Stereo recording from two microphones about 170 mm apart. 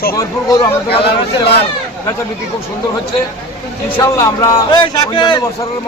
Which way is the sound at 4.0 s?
20° left (ahead or behind).